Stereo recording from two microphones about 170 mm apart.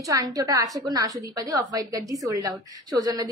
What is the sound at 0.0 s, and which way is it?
A woman's voice, 20° right (ahead or behind).